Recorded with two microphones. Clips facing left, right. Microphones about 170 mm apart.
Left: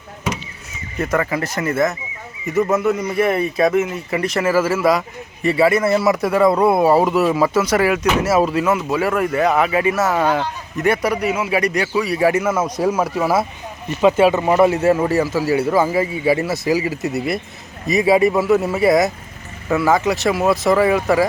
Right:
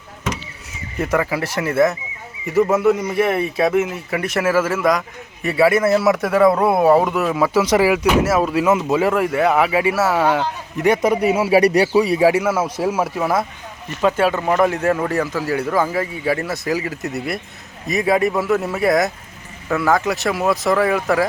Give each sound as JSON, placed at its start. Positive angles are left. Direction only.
{"t": 0.9, "sound": "speech", "side_deg": -10}
{"t": 7.5, "sound": "speech", "side_deg": -10}
{"t": 8.3, "sound": "speech", "side_deg": 0}
{"t": 8.9, "sound": "speech", "side_deg": -15}
{"t": 12.2, "sound": "speech", "side_deg": -10}